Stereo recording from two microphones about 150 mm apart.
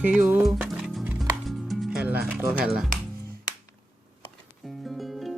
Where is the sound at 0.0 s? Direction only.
10° right (ahead or behind).